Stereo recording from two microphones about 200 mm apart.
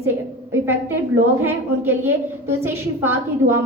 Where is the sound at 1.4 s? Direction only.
10° right (ahead or behind).